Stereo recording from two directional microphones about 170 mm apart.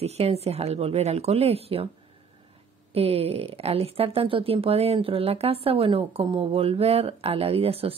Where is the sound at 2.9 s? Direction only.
35° right (ahead or behind).